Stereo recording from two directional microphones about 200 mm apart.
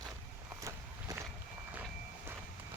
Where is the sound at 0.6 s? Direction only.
15° right (ahead or behind).